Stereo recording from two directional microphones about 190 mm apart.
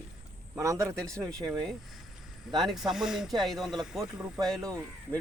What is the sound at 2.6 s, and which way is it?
Speech, centre (ahead or behind).